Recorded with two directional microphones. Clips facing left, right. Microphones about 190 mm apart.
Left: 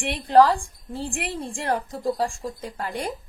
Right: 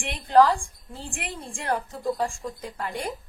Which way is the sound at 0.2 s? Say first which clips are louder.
Left 2 dB; 35° left (ahead or behind).